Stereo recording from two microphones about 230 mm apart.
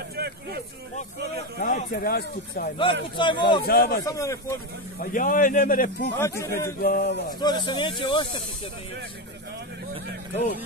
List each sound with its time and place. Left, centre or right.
0.1 s a sound: right
1.6 s a man's voice: left
2.8 s speech: left
3.6 s a man's voice: left
4.0 s speech: centre
5.1 s a man's voice: left
6.1 s speech: centre
6.8 s speech: left
7.2 s speech: centre